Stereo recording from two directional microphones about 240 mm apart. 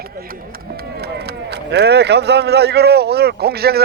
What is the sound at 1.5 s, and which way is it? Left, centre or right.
Speech, right.